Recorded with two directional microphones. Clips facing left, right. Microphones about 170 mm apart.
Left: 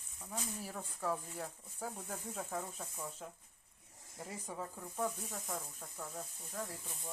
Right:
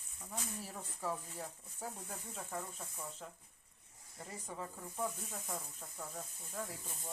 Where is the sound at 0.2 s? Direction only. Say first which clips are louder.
Left 2 dB; centre (ahead or behind).